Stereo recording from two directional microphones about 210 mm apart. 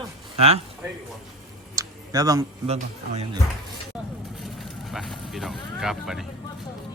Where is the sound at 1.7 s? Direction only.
15° right (ahead or behind).